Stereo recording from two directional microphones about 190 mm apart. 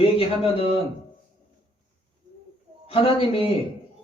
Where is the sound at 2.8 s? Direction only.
30° left (ahead or behind).